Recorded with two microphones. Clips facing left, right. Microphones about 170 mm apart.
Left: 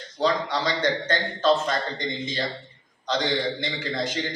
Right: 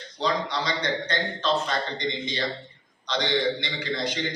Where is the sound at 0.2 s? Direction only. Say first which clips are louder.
Left 3 dB; 50° left (ahead or behind).